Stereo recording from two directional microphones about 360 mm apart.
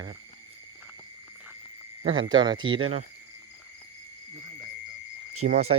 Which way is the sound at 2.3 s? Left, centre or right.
Centre.